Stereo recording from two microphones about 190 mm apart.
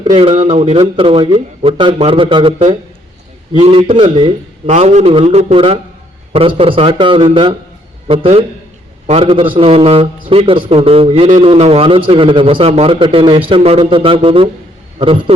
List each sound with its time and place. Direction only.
0.1 s speech: 35° right (ahead or behind)
0.6 s a man's voice: 30° right (ahead or behind)